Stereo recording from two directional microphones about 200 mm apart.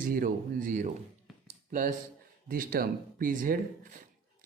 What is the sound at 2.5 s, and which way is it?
Speech, 45° right (ahead or behind).